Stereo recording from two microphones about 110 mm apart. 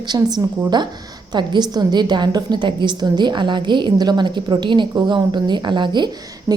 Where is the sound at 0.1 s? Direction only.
40° right (ahead or behind).